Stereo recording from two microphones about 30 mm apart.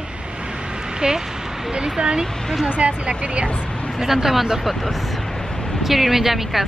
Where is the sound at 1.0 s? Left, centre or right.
Right.